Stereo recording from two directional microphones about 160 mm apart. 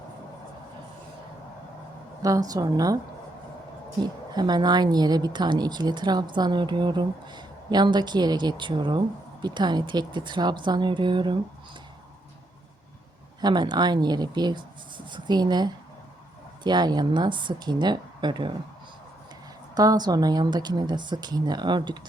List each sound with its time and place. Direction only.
2.2 s a woman's voice: 20° right (ahead or behind)
4.0 s a woman's voice: 25° right (ahead or behind)
13.4 s a woman's voice: 25° right (ahead or behind)
19.7 s a woman's voice: 25° right (ahead or behind)